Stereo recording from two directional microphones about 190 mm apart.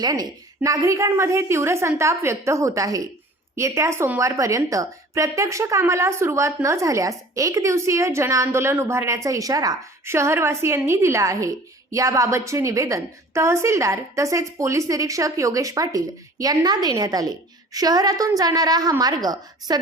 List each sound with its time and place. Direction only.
0.0 s a woman's voice: 20° right (ahead or behind)